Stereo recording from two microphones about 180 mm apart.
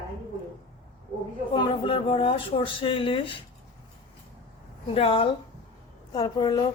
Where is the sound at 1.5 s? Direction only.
25° left (ahead or behind).